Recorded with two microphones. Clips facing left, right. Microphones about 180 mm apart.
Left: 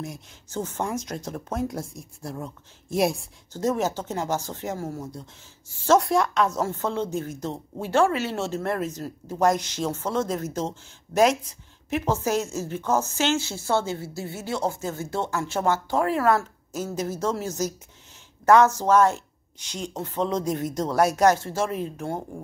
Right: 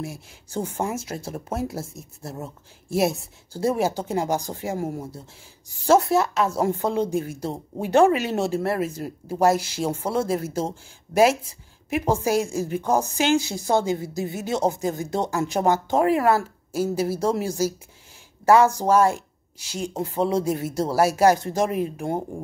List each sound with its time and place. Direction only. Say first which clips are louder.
0.0 s a woman's voice: right 2 dB; 10° right (ahead or behind)
11.9 s a woman's voice: right 3 dB; 10° right (ahead or behind)